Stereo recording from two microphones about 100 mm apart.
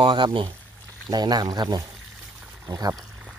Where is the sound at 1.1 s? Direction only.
40° right (ahead or behind).